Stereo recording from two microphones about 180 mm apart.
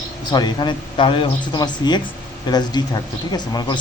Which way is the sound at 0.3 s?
25° left (ahead or behind).